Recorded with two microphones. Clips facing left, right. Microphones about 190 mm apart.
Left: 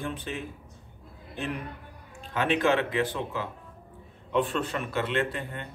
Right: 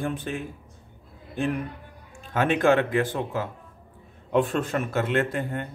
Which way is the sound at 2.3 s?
50° right (ahead or behind).